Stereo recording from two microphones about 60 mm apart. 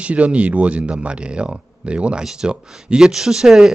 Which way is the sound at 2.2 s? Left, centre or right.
Centre.